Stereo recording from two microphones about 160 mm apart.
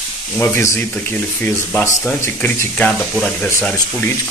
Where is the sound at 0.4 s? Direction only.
15° left (ahead or behind).